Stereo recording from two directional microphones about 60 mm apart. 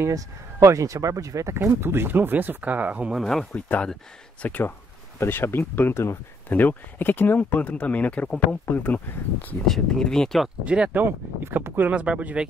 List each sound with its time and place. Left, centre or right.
0.1 s speech: right
1.7 s speech: right
3.5 s speech: left
5.2 s speech: left
6.5 s speech: left
9.7 s speech: centre
10.6 s speech: centre
11.0 s speech: right
11.9 s speech: centre